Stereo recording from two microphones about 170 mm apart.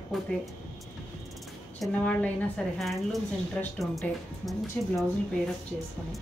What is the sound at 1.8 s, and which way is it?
Speech, 10° left (ahead or behind).